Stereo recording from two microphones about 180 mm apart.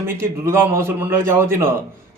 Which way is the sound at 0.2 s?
10° right (ahead or behind).